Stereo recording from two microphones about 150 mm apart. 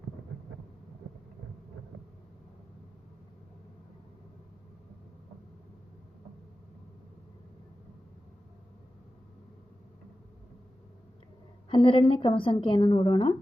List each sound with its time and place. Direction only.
11.7 s a woman's voice: 35° left (ahead or behind)